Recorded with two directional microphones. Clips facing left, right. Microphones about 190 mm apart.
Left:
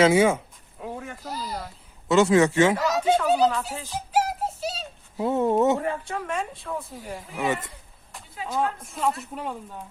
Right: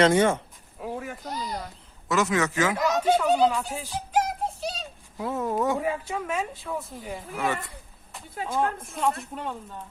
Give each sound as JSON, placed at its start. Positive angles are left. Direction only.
{"t": 0.0, "sound": "a sound", "side_deg": 10}
{"t": 2.0, "sound": "a man's voice", "side_deg": 30}
{"t": 2.7, "sound": "speech", "side_deg": 5}
{"t": 4.1, "sound": "music", "side_deg": 5}
{"t": 5.1, "sound": "a man's voice", "side_deg": 25}
{"t": 5.8, "sound": "speech", "side_deg": -5}
{"t": 7.3, "sound": "a man's voice", "side_deg": 20}
{"t": 8.5, "sound": "speech", "side_deg": 0}